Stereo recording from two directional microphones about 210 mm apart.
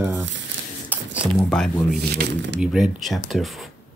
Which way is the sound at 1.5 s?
5° left (ahead or behind).